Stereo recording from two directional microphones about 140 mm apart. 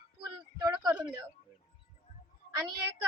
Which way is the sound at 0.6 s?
30° right (ahead or behind).